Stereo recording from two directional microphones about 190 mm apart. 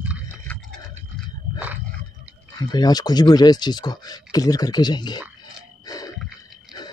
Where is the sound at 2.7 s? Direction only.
20° left (ahead or behind).